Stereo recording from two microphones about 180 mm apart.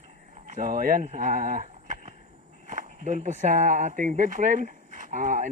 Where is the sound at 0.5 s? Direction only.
50° right (ahead or behind).